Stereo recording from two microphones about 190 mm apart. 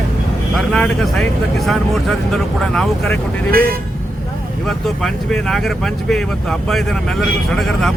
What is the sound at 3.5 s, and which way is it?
Speech, 50° right (ahead or behind).